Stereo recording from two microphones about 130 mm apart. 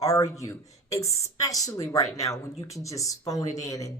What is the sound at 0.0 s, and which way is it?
Speech, 25° left (ahead or behind).